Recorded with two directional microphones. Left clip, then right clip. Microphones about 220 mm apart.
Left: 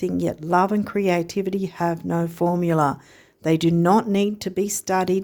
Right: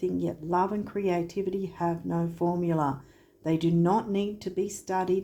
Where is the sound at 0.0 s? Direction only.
45° left (ahead or behind).